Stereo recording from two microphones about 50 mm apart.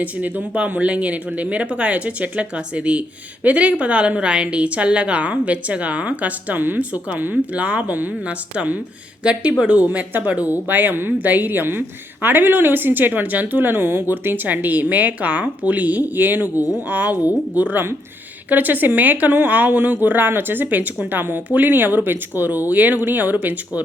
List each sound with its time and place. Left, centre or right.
0.0 s a woman's voice: right
11.2 s speech: right